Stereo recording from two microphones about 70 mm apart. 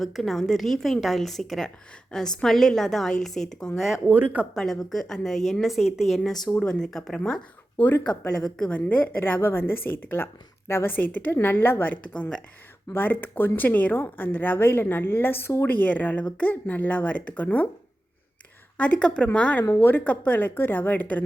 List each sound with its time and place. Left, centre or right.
0.0 s a woman's voice: centre
4.0 s speech: right
4.5 s a woman's voice: centre
7.8 s a woman's voice: left
12.0 s speech: centre
12.9 s a woman's voice: left
18.8 s speech: centre
19.7 s a woman's voice: left